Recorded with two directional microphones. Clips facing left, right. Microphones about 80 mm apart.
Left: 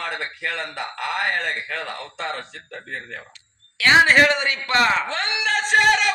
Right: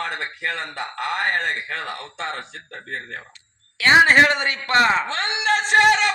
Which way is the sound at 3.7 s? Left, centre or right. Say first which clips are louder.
Right 1 dB; right.